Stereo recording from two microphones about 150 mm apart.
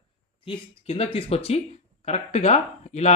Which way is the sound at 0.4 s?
40° left (ahead or behind).